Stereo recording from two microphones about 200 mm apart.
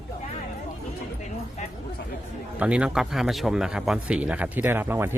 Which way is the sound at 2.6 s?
5° right (ahead or behind).